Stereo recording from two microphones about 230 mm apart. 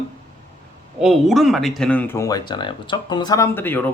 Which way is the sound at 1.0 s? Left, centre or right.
Centre.